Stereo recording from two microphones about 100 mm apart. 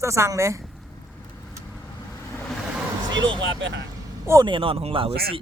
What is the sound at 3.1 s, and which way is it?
Speech, 50° right (ahead or behind).